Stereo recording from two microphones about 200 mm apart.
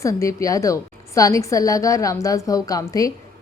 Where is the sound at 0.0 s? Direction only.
15° left (ahead or behind).